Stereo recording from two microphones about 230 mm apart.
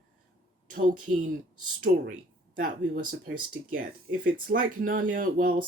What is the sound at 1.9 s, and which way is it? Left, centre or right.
Speech, right.